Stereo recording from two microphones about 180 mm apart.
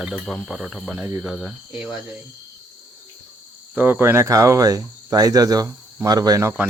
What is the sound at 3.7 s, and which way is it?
Speech, 10° right (ahead or behind).